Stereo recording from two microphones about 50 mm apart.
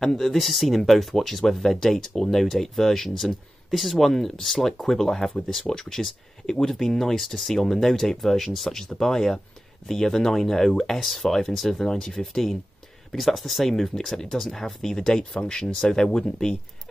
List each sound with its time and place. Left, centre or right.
0.0 s speech: centre